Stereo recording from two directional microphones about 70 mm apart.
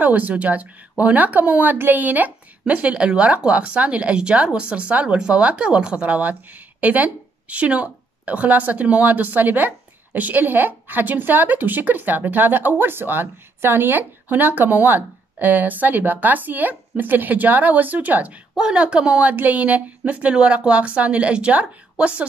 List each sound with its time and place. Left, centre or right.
0.0 s speech: right
18.6 s speech: centre